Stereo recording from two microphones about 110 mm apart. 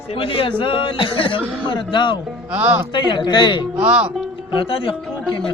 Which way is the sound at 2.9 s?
45° left (ahead or behind).